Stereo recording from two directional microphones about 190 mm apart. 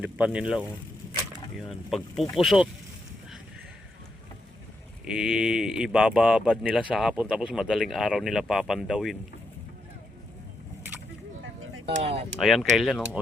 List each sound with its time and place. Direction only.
0.0 s speech: 5° right (ahead or behind)
5.0 s speech: 5° right (ahead or behind)
11.9 s speech: 30° right (ahead or behind)
12.4 s speech: centre (ahead or behind)